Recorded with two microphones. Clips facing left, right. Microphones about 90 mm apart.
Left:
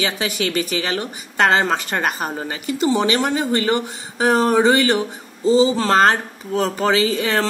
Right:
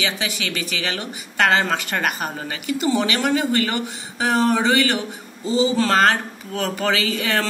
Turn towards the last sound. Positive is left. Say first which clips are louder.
# left 4 dB
turn(degrees=35)  # may be behind; listen again after turning